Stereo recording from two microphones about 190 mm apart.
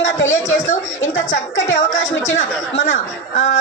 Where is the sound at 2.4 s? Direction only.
40° left (ahead or behind).